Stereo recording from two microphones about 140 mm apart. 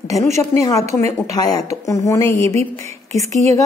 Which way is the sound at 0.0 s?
20° left (ahead or behind).